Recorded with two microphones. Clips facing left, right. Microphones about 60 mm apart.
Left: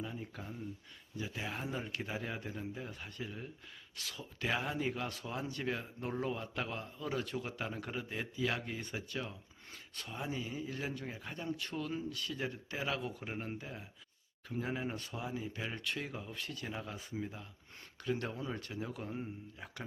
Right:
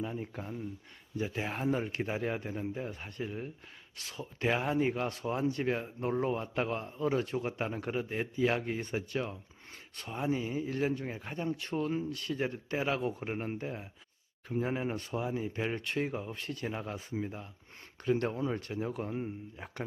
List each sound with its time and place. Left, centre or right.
0.0 s speech: right
13.2 s speech: right
19.1 s speech: centre